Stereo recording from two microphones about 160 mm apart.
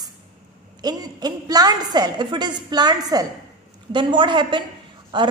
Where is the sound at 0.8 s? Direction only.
25° right (ahead or behind).